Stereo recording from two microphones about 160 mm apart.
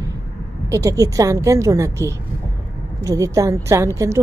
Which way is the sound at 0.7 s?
20° right (ahead or behind).